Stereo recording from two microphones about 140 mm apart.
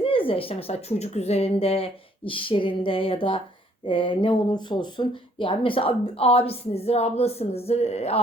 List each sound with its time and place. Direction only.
0.0 s a woman's voice: 40° left (ahead or behind)